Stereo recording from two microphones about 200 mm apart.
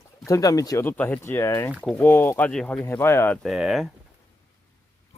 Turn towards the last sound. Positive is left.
turn(degrees=0)  # may be behind; listen again after turning